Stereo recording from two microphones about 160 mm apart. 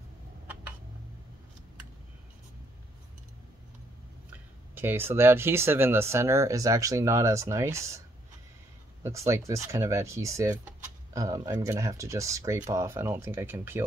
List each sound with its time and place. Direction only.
4.3 s speech: 15° right (ahead or behind)
9.0 s speech: 20° right (ahead or behind)